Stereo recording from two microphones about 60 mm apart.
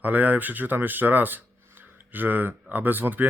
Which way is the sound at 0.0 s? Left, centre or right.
Right.